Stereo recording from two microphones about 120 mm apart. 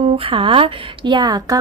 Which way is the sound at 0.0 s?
55° right (ahead or behind).